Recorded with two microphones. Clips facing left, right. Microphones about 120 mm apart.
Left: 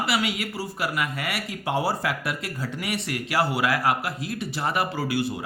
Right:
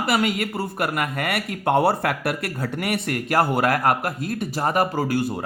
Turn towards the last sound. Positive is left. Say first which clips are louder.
# right 3 dB
turn(degrees=-45)  # may be behind; listen again after turning